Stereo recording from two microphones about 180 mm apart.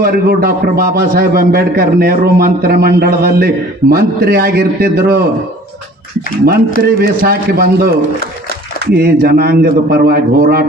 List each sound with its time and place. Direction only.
0.0 s a man's voice: 55° right (ahead or behind)
6.8 s a man's voice: 55° right (ahead or behind)
9.0 s a man's voice: 60° right (ahead or behind)